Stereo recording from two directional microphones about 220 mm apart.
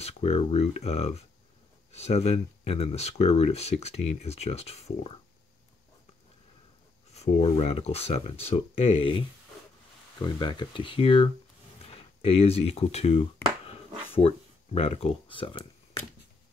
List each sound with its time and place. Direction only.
0.0 s speech: 25° left (ahead or behind)
7.2 s speech: 30° left (ahead or behind)
10.2 s speech: 20° left (ahead or behind)